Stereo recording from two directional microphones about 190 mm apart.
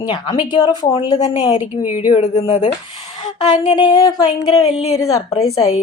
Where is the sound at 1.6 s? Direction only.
10° right (ahead or behind).